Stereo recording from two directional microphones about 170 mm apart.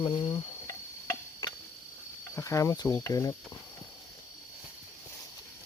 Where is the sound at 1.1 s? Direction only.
20° left (ahead or behind).